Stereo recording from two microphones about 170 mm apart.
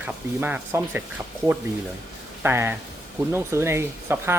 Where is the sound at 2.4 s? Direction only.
15° right (ahead or behind).